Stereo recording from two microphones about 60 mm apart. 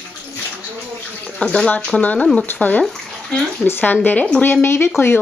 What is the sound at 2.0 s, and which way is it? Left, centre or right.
Speech, left.